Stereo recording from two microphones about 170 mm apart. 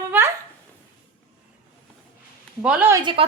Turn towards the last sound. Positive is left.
turn(degrees=-30)  # may be behind; listen again after turning